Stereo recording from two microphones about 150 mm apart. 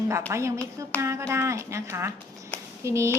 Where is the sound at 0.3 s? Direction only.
20° right (ahead or behind).